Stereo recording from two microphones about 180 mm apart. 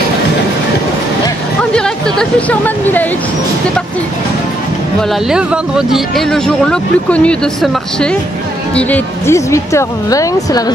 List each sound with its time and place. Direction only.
1.7 s speech: 5° left (ahead or behind)
5.3 s speech: 5° right (ahead or behind); by 10.6 s 20° left (ahead or behind)